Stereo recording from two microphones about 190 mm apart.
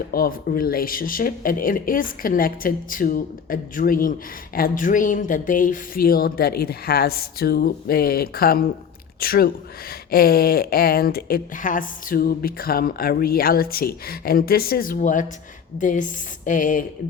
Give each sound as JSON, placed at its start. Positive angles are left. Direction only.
{"t": 0.1, "sound": "speech", "side_deg": 50}